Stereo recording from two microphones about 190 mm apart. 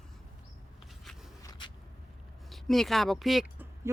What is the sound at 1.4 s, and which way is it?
Vehicle, 20° left (ahead or behind).